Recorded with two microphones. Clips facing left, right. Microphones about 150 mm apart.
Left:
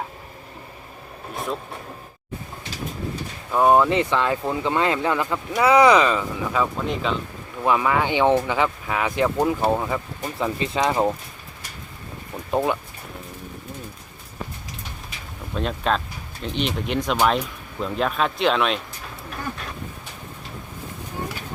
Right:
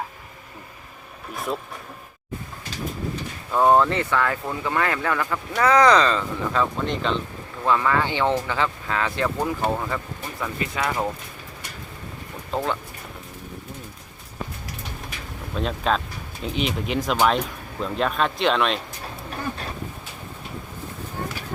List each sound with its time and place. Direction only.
3.5 s speech: 10° left (ahead or behind)
7.6 s speech: 15° left (ahead or behind)
12.5 s speech: 15° left (ahead or behind)
15.5 s speech: centre (ahead or behind)